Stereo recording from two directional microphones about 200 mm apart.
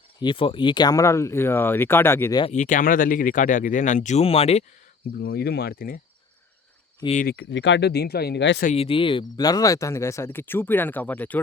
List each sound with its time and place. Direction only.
0.2 s speech: 25° left (ahead or behind)
2.4 s speech: 35° left (ahead or behind)
5.1 s speech: 50° left (ahead or behind)
7.0 s speech: 35° left (ahead or behind)
7.3 s speech: 60° left (ahead or behind)
8.6 s speech: 30° left (ahead or behind); by 11.3 s 10° left (ahead or behind)